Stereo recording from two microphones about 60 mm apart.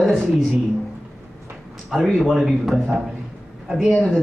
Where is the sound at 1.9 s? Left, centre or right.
Centre.